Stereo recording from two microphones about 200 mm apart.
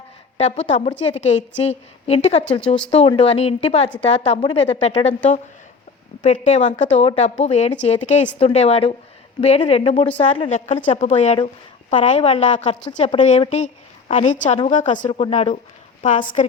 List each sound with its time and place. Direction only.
0.3 s speech: 35° left (ahead or behind)
6.2 s speech: 35° left (ahead or behind)